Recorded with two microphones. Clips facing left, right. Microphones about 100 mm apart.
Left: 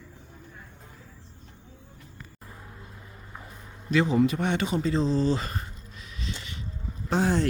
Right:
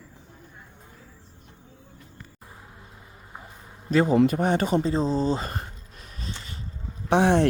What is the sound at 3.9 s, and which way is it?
A man's voice, 40° right (ahead or behind).